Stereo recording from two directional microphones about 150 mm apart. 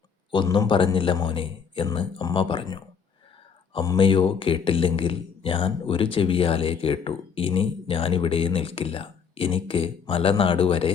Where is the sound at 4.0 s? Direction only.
35° left (ahead or behind).